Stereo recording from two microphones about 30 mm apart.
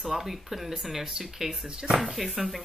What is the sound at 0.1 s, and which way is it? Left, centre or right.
Speech, centre.